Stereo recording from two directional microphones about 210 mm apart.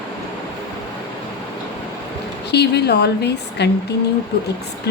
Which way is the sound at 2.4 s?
50° left (ahead or behind).